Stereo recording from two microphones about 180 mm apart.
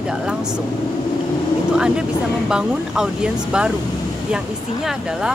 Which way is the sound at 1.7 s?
5° right (ahead or behind).